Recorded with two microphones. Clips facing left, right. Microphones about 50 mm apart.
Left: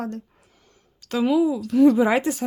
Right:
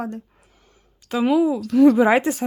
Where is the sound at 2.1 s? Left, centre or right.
Right.